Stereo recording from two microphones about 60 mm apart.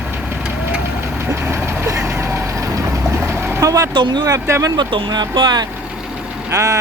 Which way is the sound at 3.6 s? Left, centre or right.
Right.